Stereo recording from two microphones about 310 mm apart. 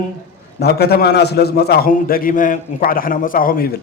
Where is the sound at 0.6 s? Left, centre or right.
Left.